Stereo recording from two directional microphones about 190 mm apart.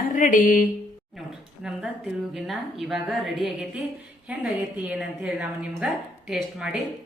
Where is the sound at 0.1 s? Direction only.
45° left (ahead or behind).